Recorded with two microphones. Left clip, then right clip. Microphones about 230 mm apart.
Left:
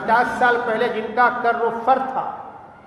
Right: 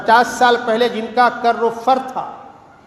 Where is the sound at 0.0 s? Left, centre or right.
Right.